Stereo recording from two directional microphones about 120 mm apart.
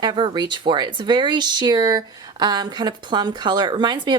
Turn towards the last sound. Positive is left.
turn(degrees=-40)  # may be behind; listen again after turning